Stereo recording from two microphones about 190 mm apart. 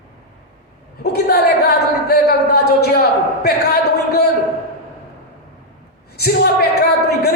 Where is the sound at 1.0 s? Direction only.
55° left (ahead or behind).